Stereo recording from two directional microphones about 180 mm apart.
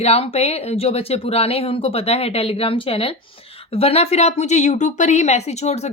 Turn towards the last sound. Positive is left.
turn(degrees=35)  # may be behind; listen again after turning